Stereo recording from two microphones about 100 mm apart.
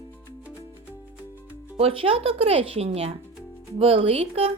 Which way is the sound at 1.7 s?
75° right (ahead or behind).